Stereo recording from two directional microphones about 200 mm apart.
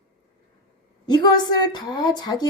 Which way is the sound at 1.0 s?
20° left (ahead or behind).